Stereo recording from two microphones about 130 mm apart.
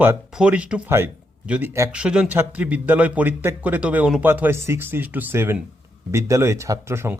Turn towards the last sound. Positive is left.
turn(degrees=-20)  # may be behind; listen again after turning